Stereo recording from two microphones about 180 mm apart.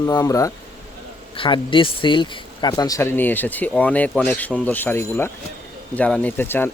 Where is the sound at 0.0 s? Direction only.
20° left (ahead or behind).